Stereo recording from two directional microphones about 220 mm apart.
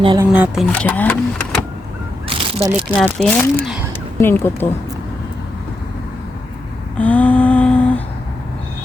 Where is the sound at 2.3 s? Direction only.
25° right (ahead or behind).